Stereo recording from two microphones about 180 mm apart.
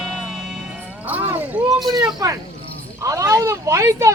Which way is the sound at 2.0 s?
20° right (ahead or behind).